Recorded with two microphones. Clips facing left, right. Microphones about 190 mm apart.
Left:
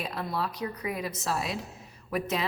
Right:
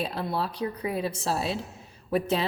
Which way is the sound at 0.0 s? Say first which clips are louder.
Right 3 dB; 30° right (ahead or behind).